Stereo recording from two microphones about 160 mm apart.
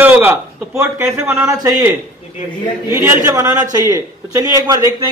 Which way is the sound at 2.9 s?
15° right (ahead or behind).